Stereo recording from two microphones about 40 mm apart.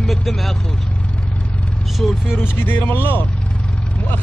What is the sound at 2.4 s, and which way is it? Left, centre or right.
Speech, left.